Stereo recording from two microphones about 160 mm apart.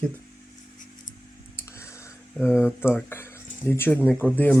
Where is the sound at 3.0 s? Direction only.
15° left (ahead or behind).